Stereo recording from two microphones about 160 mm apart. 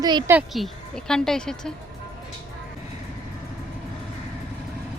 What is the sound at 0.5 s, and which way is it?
A woman's voice, centre (ahead or behind).